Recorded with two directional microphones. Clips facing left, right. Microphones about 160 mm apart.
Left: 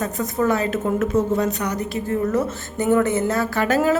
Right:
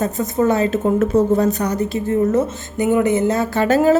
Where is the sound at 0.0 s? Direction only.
25° right (ahead or behind).